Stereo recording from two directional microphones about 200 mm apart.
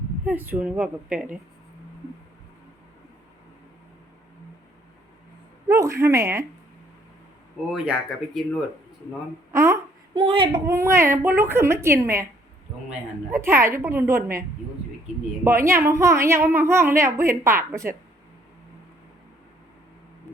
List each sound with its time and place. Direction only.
0.3 s a woman's voice: 10° right (ahead or behind)
5.6 s a woman's voice: 15° right (ahead or behind)
7.7 s speech: 5° right (ahead or behind)
9.5 s a sound: 15° right (ahead or behind)
10.2 s child singing: 25° right (ahead or behind)
10.7 s a woman's voice: 15° right (ahead or behind)
13.3 s a woman's voice: 10° right (ahead or behind)
15.4 s a woman's voice: 15° right (ahead or behind)